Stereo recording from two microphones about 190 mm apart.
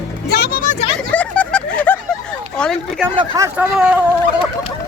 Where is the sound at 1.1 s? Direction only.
5° left (ahead or behind).